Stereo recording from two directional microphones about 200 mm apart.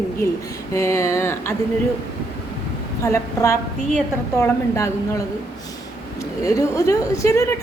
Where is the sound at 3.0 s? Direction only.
15° left (ahead or behind).